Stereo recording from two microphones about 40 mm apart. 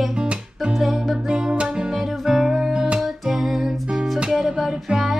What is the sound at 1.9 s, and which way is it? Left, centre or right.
Music, centre.